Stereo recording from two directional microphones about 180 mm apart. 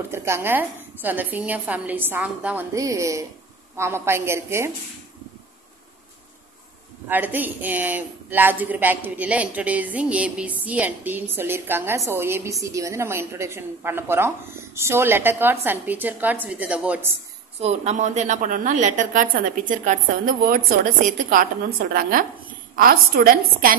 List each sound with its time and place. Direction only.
0.1 s a woman's voice: 15° right (ahead or behind)
7.1 s a woman's voice: 10° right (ahead or behind)
17.6 s a woman's voice: 35° right (ahead or behind); by 23.7 s 55° right (ahead or behind)